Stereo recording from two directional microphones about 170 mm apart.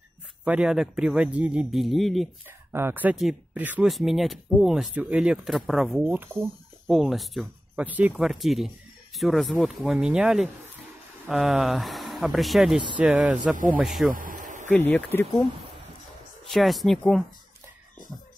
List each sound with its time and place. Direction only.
0.5 s speech: 5° right (ahead or behind)
2.7 s speech: 10° right (ahead or behind)
6.9 s speech: centre (ahead or behind)
14.1 s a sound: 50° right (ahead or behind)
14.7 s speech: 10° left (ahead or behind)
16.4 s speech: centre (ahead or behind)